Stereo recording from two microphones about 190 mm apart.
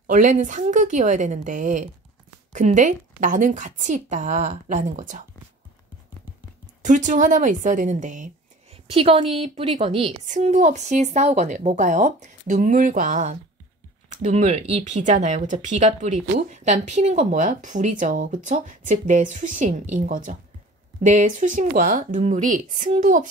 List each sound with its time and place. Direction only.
0.0 s speech: 40° right (ahead or behind)
6.8 s speech: 40° right (ahead or behind)